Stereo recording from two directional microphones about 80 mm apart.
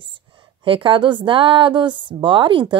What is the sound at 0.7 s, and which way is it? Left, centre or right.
A woman's voice, right.